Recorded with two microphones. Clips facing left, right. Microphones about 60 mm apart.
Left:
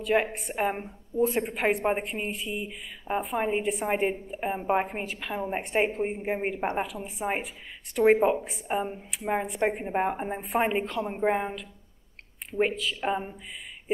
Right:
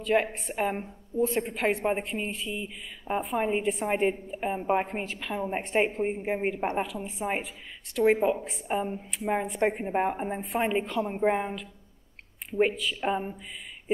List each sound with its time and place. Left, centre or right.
0.0 s a woman's voice: centre
8.0 s a woman's voice: centre
8.5 s a woman's voice: centre